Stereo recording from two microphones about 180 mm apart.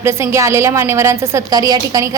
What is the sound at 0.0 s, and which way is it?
A woman's voice, 15° right (ahead or behind).